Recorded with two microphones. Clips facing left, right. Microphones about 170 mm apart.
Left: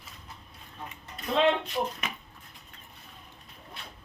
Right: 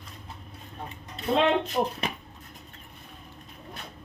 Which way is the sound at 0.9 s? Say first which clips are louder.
Right 6 dB; 30° right (ahead or behind).